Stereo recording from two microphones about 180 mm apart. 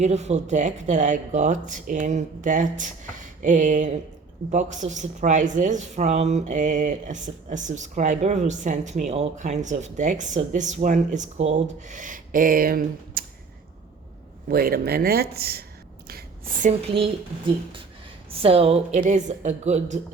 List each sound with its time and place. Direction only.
0.0 s speech: 40° right (ahead or behind); by 13.2 s 55° right (ahead or behind)
14.4 s speech: 55° right (ahead or behind)
16.0 s a sound: 50° right (ahead or behind)
18.3 s a woman's voice: 35° right (ahead or behind)